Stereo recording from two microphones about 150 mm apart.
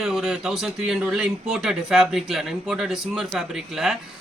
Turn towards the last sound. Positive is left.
turn(degrees=-5)  # may be behind; listen again after turning